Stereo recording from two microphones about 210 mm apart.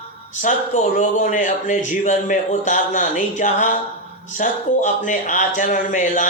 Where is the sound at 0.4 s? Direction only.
35° left (ahead or behind).